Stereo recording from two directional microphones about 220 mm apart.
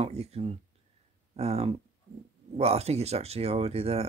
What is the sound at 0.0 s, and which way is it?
Speech, 30° right (ahead or behind).